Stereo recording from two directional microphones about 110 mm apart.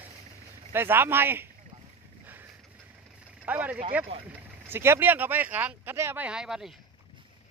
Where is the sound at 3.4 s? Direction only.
15° right (ahead or behind).